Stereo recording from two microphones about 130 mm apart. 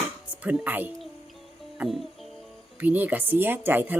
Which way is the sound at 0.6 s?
15° right (ahead or behind).